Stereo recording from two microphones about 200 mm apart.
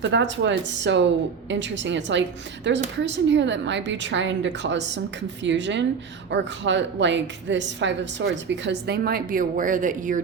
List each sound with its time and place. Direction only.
0.0 s a woman's voice: 60° right (ahead or behind); by 10.2 s 40° right (ahead or behind)